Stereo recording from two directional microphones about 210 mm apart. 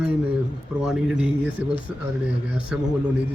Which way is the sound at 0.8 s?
5° right (ahead or behind).